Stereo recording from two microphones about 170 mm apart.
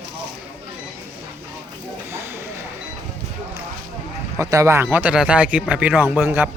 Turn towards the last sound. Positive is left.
turn(degrees=-10)  # may be behind; listen again after turning